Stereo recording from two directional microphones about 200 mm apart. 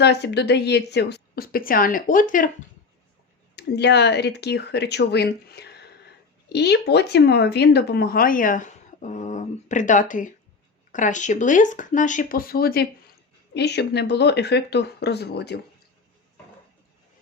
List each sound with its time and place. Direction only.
0.0 s speech: 55° left (ahead or behind)
3.5 s speech: 55° left (ahead or behind)